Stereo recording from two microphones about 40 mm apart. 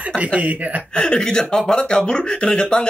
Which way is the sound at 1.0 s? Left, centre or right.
Centre.